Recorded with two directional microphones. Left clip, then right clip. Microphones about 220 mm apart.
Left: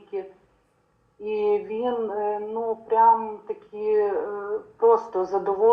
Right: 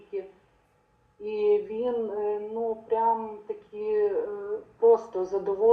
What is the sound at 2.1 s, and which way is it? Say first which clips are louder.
Speech: left 3 dB; 15° left (ahead or behind).